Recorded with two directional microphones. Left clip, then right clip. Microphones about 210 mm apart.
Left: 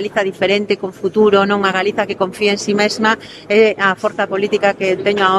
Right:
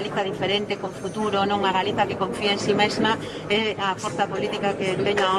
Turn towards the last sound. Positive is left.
turn(degrees=50)  # may be behind; listen again after turning